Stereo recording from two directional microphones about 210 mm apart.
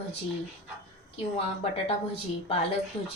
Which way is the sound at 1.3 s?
30° left (ahead or behind).